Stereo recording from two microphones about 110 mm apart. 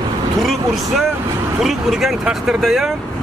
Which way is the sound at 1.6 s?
Centre (ahead or behind).